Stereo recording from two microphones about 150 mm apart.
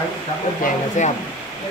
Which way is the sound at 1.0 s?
55° left (ahead or behind).